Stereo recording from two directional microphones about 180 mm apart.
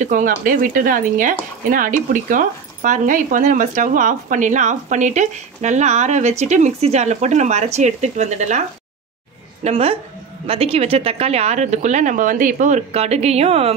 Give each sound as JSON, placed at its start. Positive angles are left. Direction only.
{"t": 0.0, "sound": "a woman's voice", "side_deg": -50}